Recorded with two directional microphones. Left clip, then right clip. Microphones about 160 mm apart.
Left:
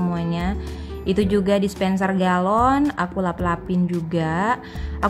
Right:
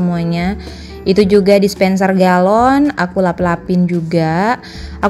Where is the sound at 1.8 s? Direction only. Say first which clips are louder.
Right 10 dB; 20° right (ahead or behind).